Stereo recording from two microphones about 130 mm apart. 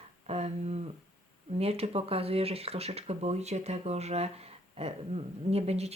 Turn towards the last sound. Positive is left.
turn(degrees=-55)  # may be behind; listen again after turning